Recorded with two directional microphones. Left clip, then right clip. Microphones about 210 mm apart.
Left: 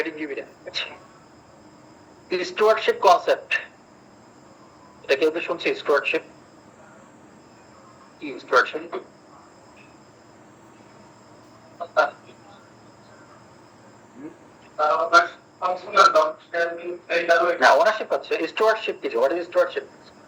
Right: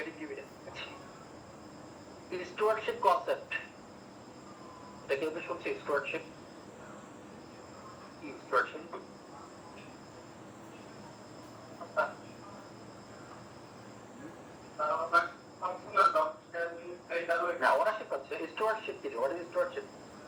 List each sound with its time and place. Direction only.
0.0 s a sound: 50° left (ahead or behind)
2.3 s a man's voice: 50° left (ahead or behind)
5.1 s a man's voice: 45° left (ahead or behind)
8.4 s a man's voice: 45° left (ahead or behind)
14.8 s a man's voice: 45° left (ahead or behind)